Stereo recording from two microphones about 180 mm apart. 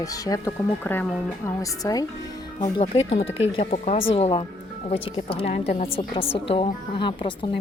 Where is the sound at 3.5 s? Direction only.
35° left (ahead or behind).